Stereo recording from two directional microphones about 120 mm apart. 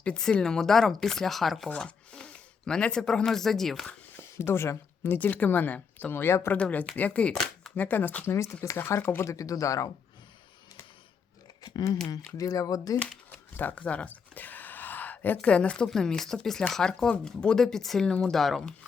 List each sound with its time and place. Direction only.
0.0 s speech: 5° left (ahead or behind)
4.2 s a woman's voice: 20° left (ahead or behind)
11.6 s speech: 35° left (ahead or behind)
13.6 s speech: 15° left (ahead or behind)